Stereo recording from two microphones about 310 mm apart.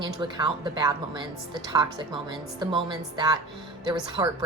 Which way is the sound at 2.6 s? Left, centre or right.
Centre.